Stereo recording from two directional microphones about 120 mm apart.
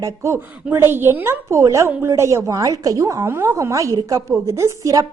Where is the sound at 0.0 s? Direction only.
20° right (ahead or behind).